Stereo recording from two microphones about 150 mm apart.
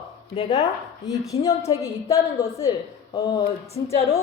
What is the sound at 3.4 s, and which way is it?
Speech, 45° left (ahead or behind).